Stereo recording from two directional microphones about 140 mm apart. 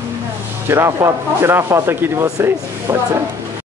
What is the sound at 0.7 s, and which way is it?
Speech, 20° right (ahead or behind).